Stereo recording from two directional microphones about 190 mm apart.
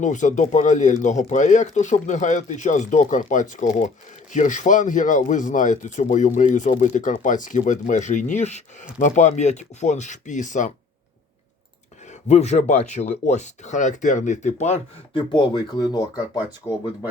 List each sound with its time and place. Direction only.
0.0 s speech: 40° left (ahead or behind)
12.3 s speech: 35° left (ahead or behind); by 16.8 s 15° left (ahead or behind)